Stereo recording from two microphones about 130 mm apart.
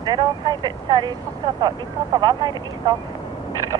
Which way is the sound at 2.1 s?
35° right (ahead or behind).